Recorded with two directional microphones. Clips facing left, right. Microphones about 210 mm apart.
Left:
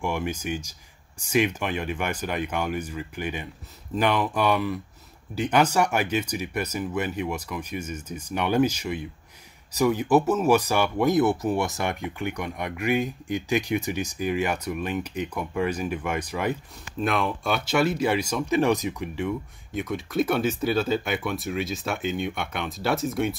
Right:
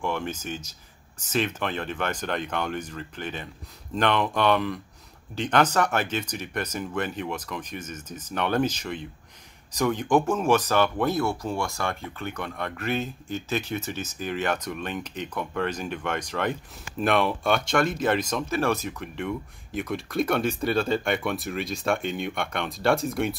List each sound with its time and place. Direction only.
0.0 s speech: 10° left (ahead or behind)